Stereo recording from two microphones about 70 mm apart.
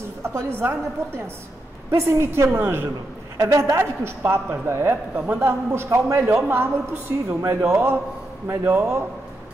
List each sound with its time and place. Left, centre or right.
0.6 s a woman's voice: right
3.3 s a woman's voice: right
3.7 s a woman's voice: right
5.1 s a man's voice: right
5.4 s a woman's voice: right